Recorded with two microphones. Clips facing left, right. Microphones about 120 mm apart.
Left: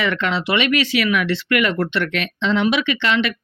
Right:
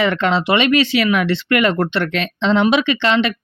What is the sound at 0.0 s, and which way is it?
Speech, 30° right (ahead or behind).